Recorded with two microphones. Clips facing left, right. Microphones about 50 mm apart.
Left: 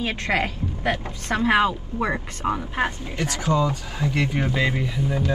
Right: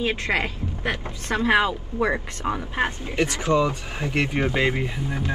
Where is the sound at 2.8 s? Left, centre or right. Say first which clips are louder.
Right 5 dB; right.